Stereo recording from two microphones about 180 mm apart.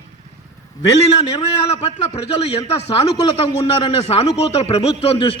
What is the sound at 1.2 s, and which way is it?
A man's voice, 35° left (ahead or behind).